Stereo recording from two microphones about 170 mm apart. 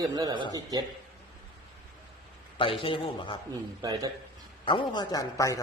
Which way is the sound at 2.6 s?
30° left (ahead or behind).